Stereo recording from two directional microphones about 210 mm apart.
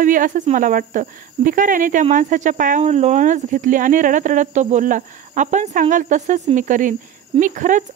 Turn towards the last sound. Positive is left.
turn(degrees=-40)  # may be behind; listen again after turning